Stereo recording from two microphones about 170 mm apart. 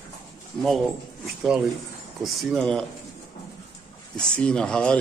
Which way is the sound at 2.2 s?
Centre (ahead or behind).